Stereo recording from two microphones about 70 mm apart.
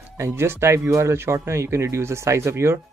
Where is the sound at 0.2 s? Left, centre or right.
Right.